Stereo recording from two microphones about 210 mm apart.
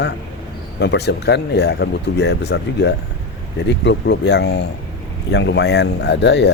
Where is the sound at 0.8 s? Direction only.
55° left (ahead or behind).